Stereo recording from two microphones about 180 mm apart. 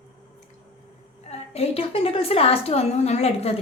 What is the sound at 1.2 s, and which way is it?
A woman's voice, 35° left (ahead or behind).